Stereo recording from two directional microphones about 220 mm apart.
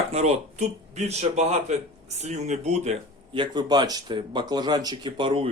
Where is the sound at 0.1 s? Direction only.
30° right (ahead or behind).